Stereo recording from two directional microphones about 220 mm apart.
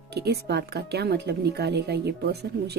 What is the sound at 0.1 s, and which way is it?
Speech, 50° right (ahead or behind).